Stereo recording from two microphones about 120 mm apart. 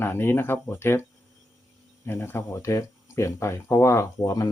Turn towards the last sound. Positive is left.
turn(degrees=25)  # may be behind; listen again after turning